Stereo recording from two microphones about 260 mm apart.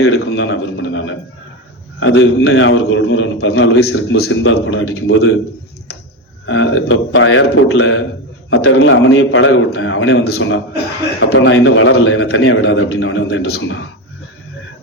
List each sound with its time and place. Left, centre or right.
0.0 s a man's voice: left
6.4 s a man's voice: left